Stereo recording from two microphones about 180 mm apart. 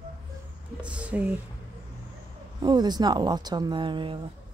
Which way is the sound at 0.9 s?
5° right (ahead or behind).